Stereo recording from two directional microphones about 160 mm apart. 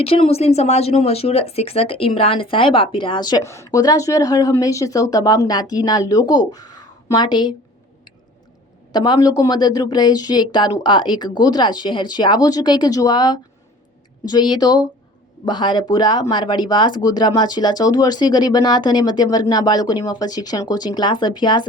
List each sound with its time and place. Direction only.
0.0 s speech: 35° left (ahead or behind)
8.9 s speech: 25° left (ahead or behind)